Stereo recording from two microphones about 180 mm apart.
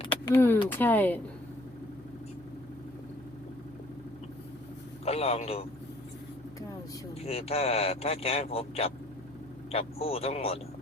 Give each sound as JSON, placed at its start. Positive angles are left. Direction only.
{"t": 0.1, "sound": "vehicle", "side_deg": 10}
{"t": 0.7, "sound": "speech", "side_deg": 10}
{"t": 5.0, "sound": "speech", "side_deg": 35}
{"t": 7.3, "sound": "speech", "side_deg": 35}